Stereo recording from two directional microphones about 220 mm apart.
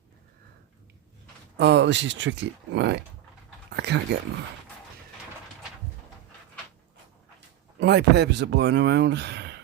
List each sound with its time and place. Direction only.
1.5 s speech: 50° right (ahead or behind)
3.7 s a sound: 50° right (ahead or behind)
7.8 s speech: 50° right (ahead or behind)